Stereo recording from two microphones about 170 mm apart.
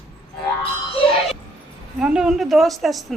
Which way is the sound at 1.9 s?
5° right (ahead or behind).